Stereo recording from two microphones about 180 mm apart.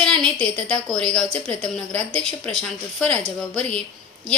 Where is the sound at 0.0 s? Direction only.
5° left (ahead or behind).